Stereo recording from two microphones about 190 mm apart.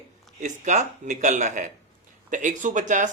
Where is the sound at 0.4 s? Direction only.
40° right (ahead or behind).